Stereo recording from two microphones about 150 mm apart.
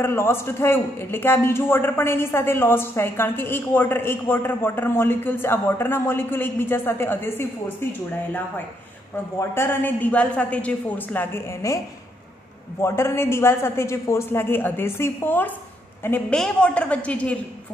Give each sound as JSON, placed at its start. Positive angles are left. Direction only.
{"t": 0.0, "sound": "a man's voice", "side_deg": 15}
{"t": 12.8, "sound": "a man's voice", "side_deg": 15}